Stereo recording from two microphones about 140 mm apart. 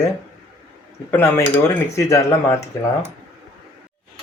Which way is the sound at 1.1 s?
15° left (ahead or behind).